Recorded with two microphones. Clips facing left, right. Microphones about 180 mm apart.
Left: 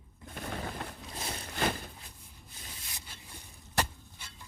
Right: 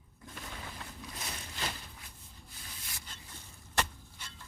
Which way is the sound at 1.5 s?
55° left (ahead or behind).